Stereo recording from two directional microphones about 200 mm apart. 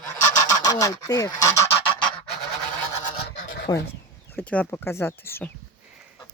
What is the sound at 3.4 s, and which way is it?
Rub, 65° left (ahead or behind).